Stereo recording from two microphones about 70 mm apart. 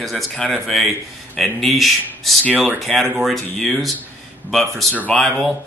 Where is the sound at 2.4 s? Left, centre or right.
Right.